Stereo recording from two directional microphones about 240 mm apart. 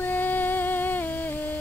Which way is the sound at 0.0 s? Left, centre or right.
Centre.